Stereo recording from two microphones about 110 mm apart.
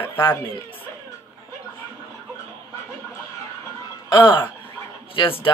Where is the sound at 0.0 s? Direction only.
20° left (ahead or behind).